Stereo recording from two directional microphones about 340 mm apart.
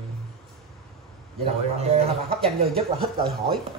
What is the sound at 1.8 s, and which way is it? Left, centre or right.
Speech, centre.